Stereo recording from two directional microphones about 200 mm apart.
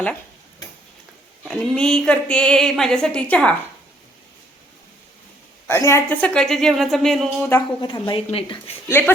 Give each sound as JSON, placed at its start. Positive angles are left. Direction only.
{"t": 1.5, "sound": "a woman's voice", "side_deg": 5}
{"t": 5.6, "sound": "a woman's voice", "side_deg": 10}
{"t": 7.5, "sound": "a woman's voice", "side_deg": 20}
{"t": 8.9, "sound": "speech", "side_deg": 10}